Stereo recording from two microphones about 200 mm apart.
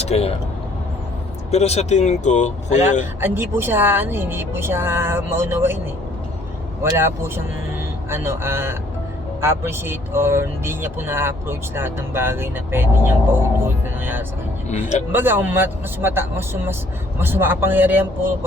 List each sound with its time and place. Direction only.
0.0 s speech: 30° left (ahead or behind)
1.5 s speech: 35° left (ahead or behind)
3.2 s speech: 10° right (ahead or behind)
6.9 s speech: 10° right (ahead or behind)
14.7 s speech: 35° left (ahead or behind)
15.1 s speech: 10° right (ahead or behind)